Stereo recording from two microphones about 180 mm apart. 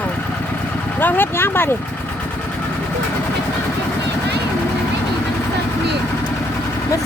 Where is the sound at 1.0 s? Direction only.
10° left (ahead or behind).